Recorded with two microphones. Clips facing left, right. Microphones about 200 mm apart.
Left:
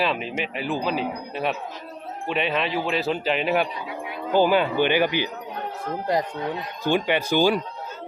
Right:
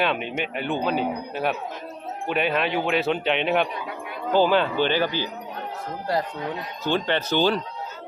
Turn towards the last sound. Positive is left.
turn(degrees=10)  # may be behind; listen again after turning